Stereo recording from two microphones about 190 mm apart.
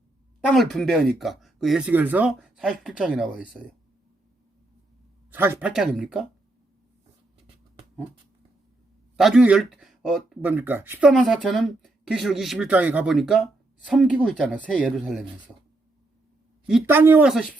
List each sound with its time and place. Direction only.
0.4 s speech: centre (ahead or behind)
5.3 s speech: 10° right (ahead or behind)
9.1 s speech: 5° right (ahead or behind)
10.4 s speech: 10° right (ahead or behind)
16.6 s speech: 5° right (ahead or behind)